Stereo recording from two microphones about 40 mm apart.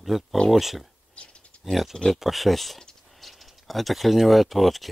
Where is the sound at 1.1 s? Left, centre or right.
Left.